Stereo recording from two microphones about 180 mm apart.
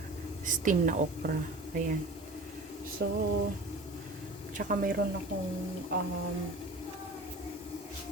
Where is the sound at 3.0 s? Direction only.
80° right.